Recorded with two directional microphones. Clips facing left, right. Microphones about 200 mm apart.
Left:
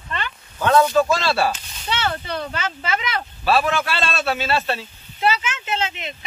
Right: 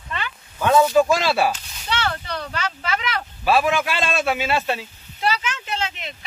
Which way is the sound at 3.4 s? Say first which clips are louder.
Right 1 dB; 10° right (ahead or behind).